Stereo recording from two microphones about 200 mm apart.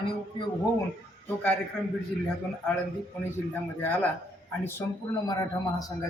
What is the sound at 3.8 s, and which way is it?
Speech, 10° left (ahead or behind).